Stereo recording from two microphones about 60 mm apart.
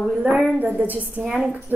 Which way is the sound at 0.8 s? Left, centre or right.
Right.